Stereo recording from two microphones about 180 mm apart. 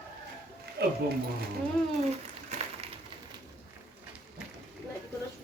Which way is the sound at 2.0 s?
40° right (ahead or behind).